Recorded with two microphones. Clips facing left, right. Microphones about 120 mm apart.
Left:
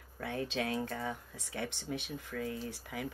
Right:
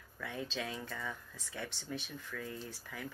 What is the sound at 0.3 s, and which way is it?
Speech, 60° left (ahead or behind).